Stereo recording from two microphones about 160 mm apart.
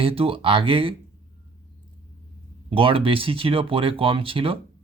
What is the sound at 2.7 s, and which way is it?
Speech, 35° right (ahead or behind).